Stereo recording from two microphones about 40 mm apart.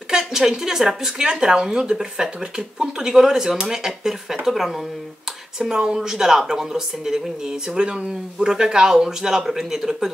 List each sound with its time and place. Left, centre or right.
0.1 s speech: centre
5.6 s speech: centre